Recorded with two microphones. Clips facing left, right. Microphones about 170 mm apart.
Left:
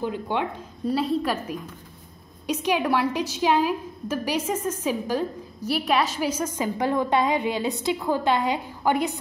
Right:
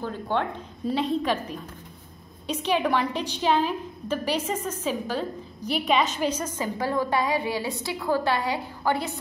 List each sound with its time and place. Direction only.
0.0 s a woman's voice: 15° left (ahead or behind)